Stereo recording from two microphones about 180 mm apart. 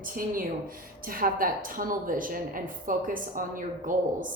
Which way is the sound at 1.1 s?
50° right (ahead or behind).